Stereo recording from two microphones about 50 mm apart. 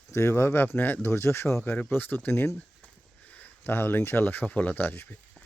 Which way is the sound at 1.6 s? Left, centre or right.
Left.